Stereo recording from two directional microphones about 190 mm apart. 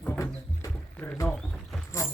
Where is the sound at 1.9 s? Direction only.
15° left (ahead or behind).